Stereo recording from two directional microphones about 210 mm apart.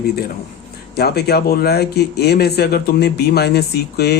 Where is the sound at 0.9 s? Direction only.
50° left (ahead or behind).